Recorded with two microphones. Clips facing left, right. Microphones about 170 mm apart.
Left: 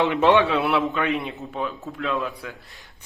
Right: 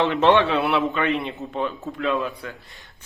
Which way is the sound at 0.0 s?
10° left (ahead or behind).